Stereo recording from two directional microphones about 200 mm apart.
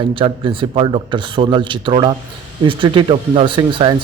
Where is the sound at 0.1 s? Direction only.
25° right (ahead or behind).